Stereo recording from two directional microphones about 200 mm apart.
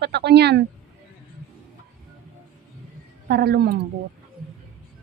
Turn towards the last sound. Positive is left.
turn(degrees=-50)  # may be behind; listen again after turning